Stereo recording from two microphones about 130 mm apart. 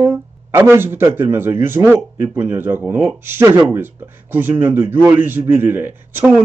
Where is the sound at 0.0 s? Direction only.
15° right (ahead or behind).